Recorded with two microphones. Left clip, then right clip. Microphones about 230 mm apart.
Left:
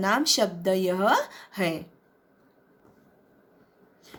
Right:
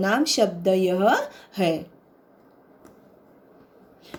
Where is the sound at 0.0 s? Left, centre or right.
Centre.